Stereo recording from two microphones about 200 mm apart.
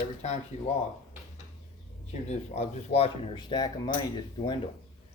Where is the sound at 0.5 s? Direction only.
35° left (ahead or behind).